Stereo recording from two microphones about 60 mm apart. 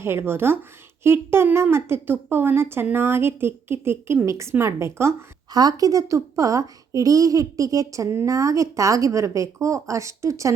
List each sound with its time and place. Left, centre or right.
0.0 s a woman's voice: right
5.5 s speech: right